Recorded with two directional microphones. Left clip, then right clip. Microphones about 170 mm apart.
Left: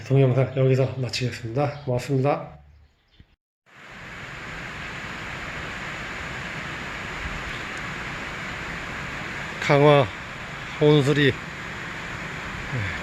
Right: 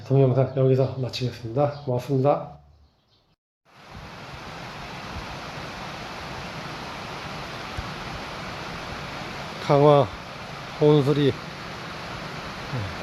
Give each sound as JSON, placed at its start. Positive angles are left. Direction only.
{"t": 0.1, "sound": "speech", "side_deg": -5}
{"t": 4.1, "sound": "vehicle", "side_deg": 50}
{"t": 9.6, "sound": "speech", "side_deg": 0}
{"t": 11.3, "sound": "a sound", "side_deg": 55}